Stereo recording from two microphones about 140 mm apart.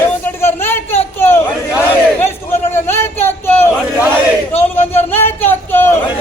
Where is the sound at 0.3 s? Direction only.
15° left (ahead or behind).